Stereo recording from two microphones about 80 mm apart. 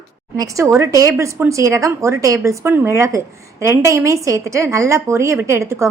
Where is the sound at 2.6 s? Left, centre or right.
Right.